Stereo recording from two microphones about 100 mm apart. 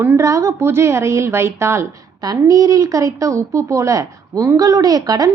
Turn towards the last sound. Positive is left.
turn(degrees=-40)  # may be behind; listen again after turning